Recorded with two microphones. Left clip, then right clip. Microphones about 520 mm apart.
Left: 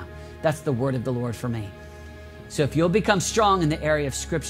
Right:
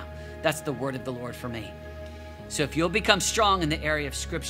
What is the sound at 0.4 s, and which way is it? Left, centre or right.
Speech, left.